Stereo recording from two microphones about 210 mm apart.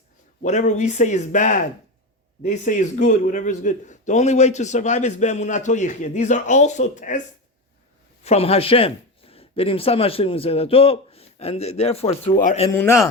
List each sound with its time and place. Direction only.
0.4 s a man's voice: 35° left (ahead or behind)
8.2 s speech: 30° left (ahead or behind)
12.7 s a man's voice: 10° left (ahead or behind)